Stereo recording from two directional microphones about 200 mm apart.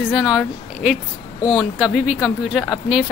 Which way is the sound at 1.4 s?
20° left (ahead or behind).